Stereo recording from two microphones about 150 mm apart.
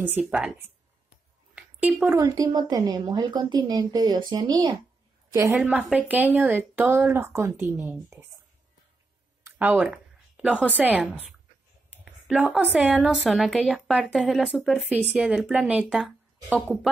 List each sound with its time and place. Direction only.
0.0 s a woman's voice: 10° right (ahead or behind)
1.5 s a sound: 10° right (ahead or behind)
2.1 s a woman's voice: 25° right (ahead or behind)
5.6 s a woman's voice: 5° right (ahead or behind)
9.4 s speech: 15° right (ahead or behind)
10.3 s a sound: 10° right (ahead or behind)
10.7 s a woman's voice: 10° right (ahead or behind)